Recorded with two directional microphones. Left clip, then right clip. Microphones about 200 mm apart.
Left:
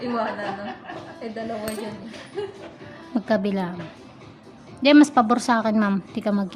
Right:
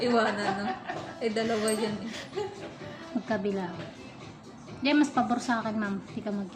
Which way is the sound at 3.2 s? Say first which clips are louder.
Left 7 dB; 65° left (ahead or behind).